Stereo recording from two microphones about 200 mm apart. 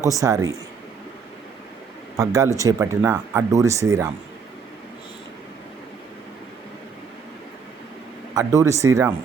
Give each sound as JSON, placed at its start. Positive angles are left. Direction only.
{"t": 0.2, "sound": "speech", "side_deg": -15}
{"t": 2.1, "sound": "speech", "side_deg": -15}
{"t": 8.4, "sound": "speech", "side_deg": -15}